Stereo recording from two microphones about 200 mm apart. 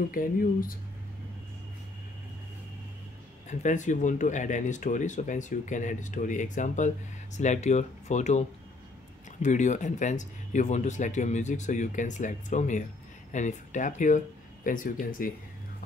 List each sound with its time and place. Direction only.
0.1 s speech: 45° left (ahead or behind)
3.4 s speech: 40° left (ahead or behind)